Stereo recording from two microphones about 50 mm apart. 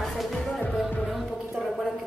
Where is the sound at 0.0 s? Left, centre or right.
Centre.